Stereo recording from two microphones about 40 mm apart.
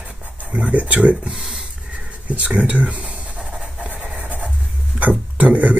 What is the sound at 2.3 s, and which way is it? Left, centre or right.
Speech, right.